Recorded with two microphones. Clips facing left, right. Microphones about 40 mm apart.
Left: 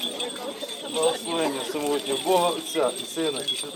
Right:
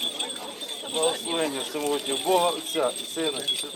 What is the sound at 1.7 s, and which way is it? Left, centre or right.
Speech, centre.